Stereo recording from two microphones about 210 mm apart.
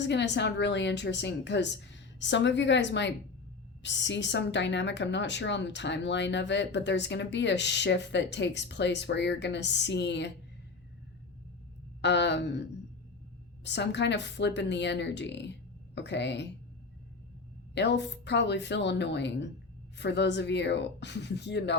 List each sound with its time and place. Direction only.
0.0 s speech: 55° left (ahead or behind)
12.0 s speech: 55° left (ahead or behind)
13.7 s speech: 55° left (ahead or behind)
17.7 s speech: 55° left (ahead or behind)